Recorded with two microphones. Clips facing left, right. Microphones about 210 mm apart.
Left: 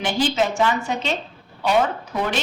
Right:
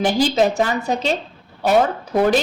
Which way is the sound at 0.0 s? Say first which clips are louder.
Right 5 dB; 40° right (ahead or behind).